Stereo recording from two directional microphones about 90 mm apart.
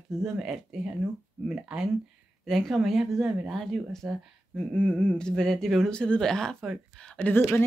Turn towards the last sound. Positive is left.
turn(degrees=15)  # may be behind; listen again after turning